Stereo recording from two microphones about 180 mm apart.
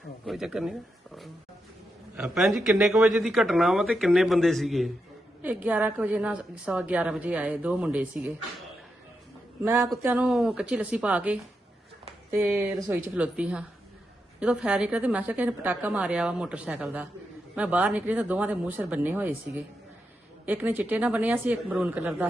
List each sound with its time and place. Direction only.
0.3 s a woman's voice: centre (ahead or behind)
9.6 s a woman's voice: 15° right (ahead or behind)